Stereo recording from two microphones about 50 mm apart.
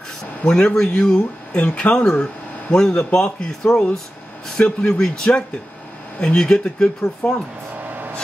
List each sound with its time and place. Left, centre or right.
0.5 s a man's voice: centre
7.9 s vehicle: right